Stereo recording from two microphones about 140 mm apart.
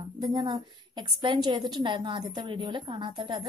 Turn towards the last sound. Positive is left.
turn(degrees=-35)  # may be behind; listen again after turning